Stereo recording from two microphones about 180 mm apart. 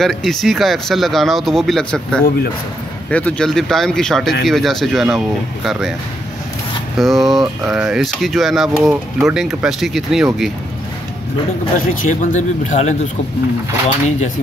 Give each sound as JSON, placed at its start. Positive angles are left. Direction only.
{"t": 0.0, "sound": "speech", "side_deg": 0}
{"t": 7.0, "sound": "speech", "side_deg": 0}
{"t": 12.1, "sound": "speech", "side_deg": 45}